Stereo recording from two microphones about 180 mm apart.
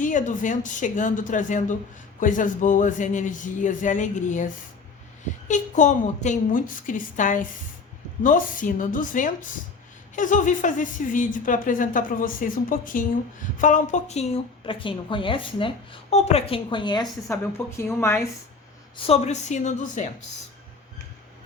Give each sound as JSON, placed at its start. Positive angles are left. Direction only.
{"t": 0.0, "sound": "a woman's voice", "side_deg": 45}
{"t": 18.9, "sound": "a woman's voice", "side_deg": 35}